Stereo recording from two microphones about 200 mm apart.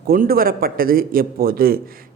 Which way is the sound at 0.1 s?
45° right (ahead or behind).